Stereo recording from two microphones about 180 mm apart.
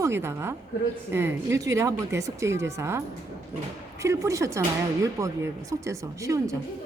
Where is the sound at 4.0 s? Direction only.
15° right (ahead or behind).